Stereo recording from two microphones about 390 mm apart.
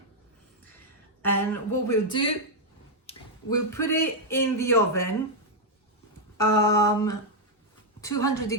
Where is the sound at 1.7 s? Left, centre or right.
Centre.